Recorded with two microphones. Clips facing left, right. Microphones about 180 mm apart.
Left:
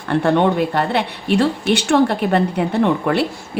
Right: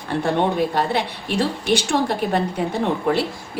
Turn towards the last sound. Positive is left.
turn(degrees=65)  # may be behind; listen again after turning